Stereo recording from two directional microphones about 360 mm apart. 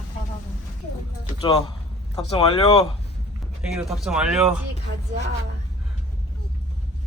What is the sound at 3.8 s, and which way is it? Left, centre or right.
Speech, centre.